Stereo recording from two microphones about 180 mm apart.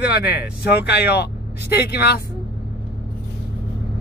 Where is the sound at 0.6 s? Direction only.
65° left (ahead or behind).